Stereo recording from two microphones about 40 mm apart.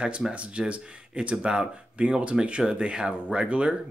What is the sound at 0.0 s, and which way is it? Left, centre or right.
Speech, right.